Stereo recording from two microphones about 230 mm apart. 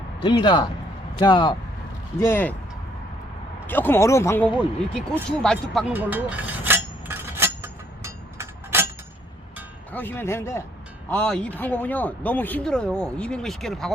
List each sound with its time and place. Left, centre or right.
0.2 s a man's voice: centre
2.2 s speech: centre
3.7 s speech: centre
5.9 s a sound: centre
9.9 s speech: centre